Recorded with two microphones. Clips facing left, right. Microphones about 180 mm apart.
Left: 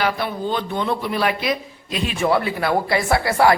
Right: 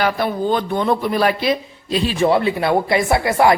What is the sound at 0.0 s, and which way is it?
Speech, 45° right (ahead or behind).